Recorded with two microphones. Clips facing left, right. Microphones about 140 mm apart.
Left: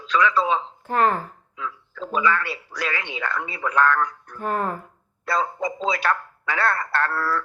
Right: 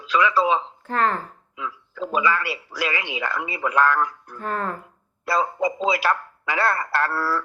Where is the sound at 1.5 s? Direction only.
10° right (ahead or behind).